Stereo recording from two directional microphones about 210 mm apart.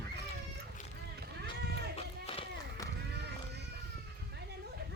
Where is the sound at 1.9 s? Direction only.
25° left (ahead or behind).